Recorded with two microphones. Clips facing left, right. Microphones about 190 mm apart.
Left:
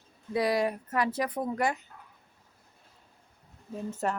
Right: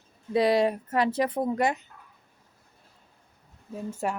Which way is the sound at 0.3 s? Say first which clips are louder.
Right 5 dB; 25° right (ahead or behind).